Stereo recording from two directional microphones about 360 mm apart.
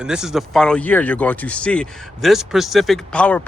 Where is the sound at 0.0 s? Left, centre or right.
Centre.